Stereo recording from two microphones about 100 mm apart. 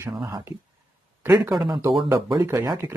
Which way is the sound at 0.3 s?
35° right (ahead or behind).